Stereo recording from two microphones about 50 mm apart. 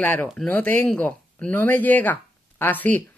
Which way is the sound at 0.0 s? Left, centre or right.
Left.